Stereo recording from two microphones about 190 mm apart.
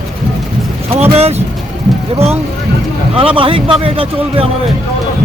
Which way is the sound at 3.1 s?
30° right (ahead or behind).